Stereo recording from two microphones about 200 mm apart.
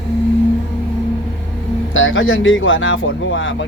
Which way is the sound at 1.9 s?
75° left (ahead or behind).